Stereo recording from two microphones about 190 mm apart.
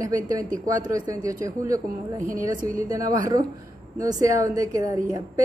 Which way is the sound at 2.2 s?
45° right (ahead or behind).